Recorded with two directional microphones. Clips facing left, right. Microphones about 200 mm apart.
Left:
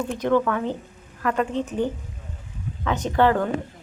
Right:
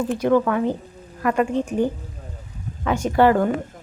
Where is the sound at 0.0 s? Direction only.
5° right (ahead or behind).